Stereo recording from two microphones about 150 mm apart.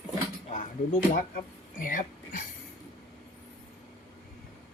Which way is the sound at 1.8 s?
65° left (ahead or behind).